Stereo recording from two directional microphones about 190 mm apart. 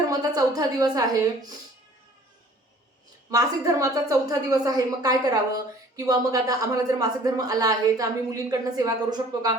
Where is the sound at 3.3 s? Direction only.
20° right (ahead or behind).